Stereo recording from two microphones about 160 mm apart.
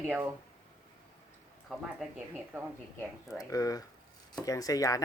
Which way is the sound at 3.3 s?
20° left (ahead or behind).